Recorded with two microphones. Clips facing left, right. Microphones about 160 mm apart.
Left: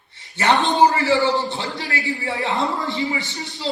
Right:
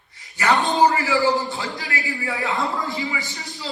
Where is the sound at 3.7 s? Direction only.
30° left (ahead or behind).